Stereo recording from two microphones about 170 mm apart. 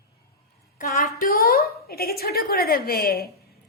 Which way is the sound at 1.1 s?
60° left (ahead or behind).